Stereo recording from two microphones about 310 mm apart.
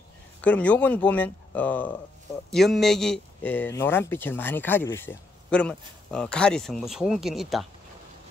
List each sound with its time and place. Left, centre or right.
0.4 s speech: centre